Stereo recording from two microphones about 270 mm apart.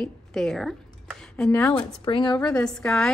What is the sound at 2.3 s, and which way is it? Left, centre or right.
Speech, centre.